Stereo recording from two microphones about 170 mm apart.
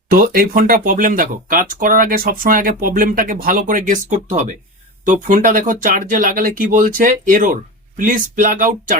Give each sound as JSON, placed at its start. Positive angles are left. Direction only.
{"t": 0.1, "sound": "speech", "side_deg": -60}